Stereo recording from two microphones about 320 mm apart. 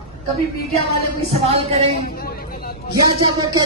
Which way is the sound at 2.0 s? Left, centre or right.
Left.